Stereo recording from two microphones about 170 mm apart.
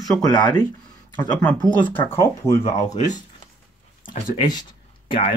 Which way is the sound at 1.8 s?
10° left (ahead or behind).